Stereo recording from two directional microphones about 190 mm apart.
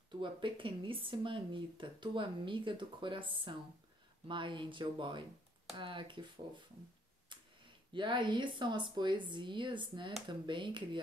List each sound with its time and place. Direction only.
0.2 s speech: 25° right (ahead or behind)
7.3 s tick: 25° right (ahead or behind)
7.9 s speech: 25° right (ahead or behind)